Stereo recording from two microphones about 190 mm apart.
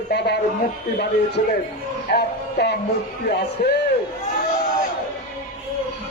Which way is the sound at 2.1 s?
60° left (ahead or behind).